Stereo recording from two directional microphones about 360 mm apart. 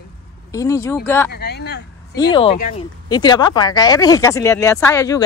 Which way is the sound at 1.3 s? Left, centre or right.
Left.